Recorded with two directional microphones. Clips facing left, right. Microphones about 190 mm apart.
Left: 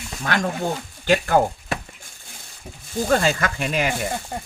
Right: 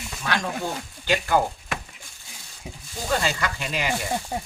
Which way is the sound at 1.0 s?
50° left (ahead or behind).